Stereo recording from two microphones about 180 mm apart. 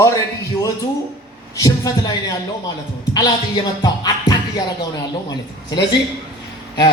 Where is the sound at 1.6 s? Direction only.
20° left (ahead or behind).